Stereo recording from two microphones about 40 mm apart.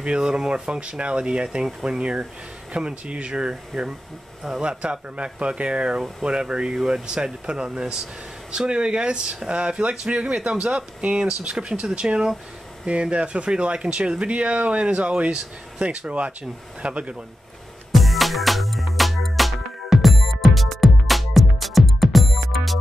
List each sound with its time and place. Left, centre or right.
0.0 s speech: right
11.1 s speech: centre
11.7 s speech: right
17.9 s music: centre